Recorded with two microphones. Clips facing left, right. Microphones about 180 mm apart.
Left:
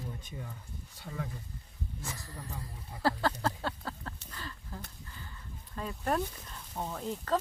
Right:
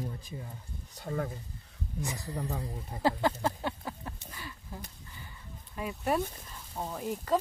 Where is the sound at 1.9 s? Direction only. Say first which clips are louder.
Right 9 dB; 20° right (ahead or behind).